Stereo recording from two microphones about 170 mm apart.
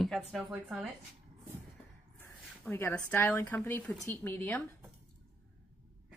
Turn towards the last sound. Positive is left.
turn(degrees=10)  # may be behind; listen again after turning